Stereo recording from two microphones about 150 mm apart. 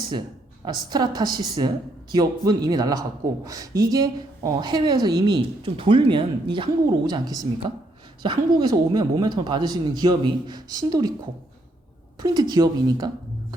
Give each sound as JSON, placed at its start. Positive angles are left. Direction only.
{"t": 0.1, "sound": "a woman's voice", "side_deg": -30}
{"t": 12.2, "sound": "a woman's voice", "side_deg": -30}